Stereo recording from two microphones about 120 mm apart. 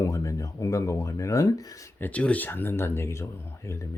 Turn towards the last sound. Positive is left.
turn(degrees=20)  # may be behind; listen again after turning